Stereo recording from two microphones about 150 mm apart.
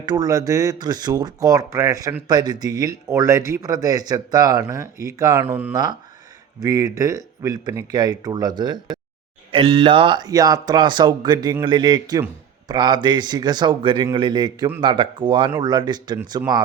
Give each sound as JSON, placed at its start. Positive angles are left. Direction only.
{"t": 0.0, "sound": "speech", "side_deg": -25}
{"t": 5.7, "sound": "speech", "side_deg": -25}